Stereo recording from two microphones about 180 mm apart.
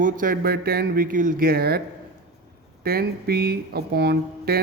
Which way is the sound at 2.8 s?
60° right (ahead or behind).